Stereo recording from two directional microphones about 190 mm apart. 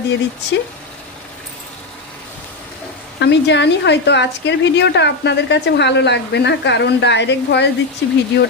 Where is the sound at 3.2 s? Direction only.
65° left (ahead or behind).